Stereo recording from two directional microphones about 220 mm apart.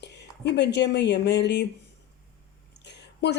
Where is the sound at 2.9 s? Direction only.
50° left (ahead or behind).